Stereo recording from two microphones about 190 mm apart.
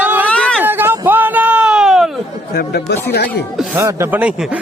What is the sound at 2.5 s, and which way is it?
Speech, 55° left (ahead or behind).